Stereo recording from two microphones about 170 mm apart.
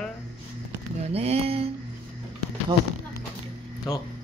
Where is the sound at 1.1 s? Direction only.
35° right (ahead or behind).